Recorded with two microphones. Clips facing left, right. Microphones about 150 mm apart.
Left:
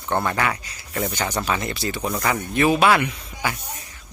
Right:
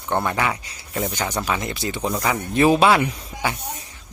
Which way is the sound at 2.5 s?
30° right (ahead or behind).